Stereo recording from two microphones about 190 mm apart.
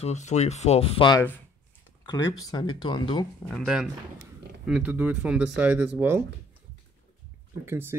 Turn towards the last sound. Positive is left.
turn(degrees=-10)  # may be behind; listen again after turning